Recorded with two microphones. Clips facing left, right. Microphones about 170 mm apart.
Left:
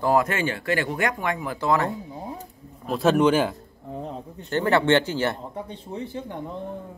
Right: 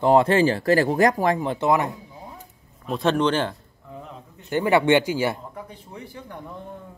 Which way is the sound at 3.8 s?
35° left (ahead or behind).